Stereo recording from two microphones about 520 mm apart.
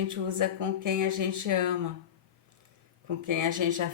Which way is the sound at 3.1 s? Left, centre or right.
Right.